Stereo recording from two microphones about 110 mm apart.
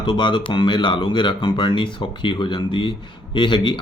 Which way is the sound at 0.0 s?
45° left (ahead or behind).